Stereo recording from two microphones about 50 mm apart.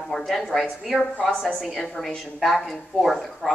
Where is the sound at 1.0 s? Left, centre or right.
Left.